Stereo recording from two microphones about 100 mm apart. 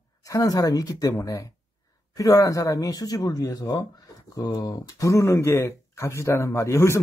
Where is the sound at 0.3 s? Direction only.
35° left (ahead or behind).